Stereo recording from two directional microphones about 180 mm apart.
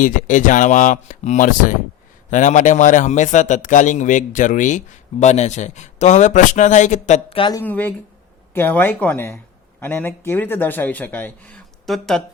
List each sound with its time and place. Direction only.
0.0 s a man's voice: 45° left (ahead or behind); by 7.6 s 30° left (ahead or behind)
7.6 s speech: 10° left (ahead or behind)